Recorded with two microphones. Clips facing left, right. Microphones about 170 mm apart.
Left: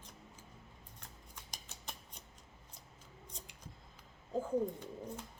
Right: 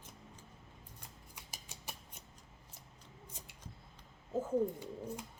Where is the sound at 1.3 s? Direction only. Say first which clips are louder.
Even; 10° right (ahead or behind).